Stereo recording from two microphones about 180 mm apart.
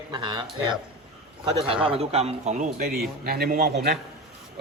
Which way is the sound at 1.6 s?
30° right (ahead or behind).